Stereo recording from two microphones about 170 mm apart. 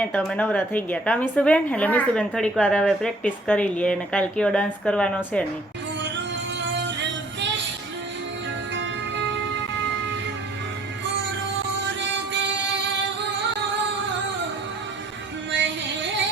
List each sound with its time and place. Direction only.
0.0 s a woman's voice: 5° left (ahead or behind)
6.7 s music: 90° right
11.9 s music: 90° right
15.6 s music: 90° right